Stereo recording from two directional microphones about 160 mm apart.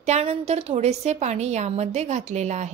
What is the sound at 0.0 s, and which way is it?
A woman's voice, 40° right (ahead or behind).